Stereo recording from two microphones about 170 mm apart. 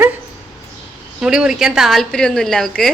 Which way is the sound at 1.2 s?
5° right (ahead or behind).